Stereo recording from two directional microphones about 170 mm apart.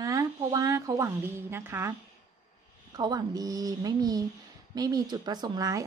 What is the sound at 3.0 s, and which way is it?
A woman's voice, 20° right (ahead or behind).